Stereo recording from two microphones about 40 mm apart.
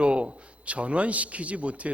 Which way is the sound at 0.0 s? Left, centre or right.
Right.